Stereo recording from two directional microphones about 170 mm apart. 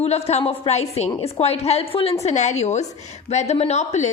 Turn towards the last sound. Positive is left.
turn(degrees=40)  # may be behind; listen again after turning